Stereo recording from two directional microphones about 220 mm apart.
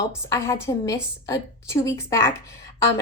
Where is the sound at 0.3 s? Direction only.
10° left (ahead or behind).